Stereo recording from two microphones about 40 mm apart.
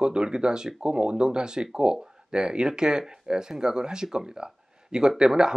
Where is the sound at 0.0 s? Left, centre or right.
Centre.